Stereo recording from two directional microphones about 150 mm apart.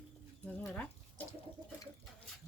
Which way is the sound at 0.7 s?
10° left (ahead or behind).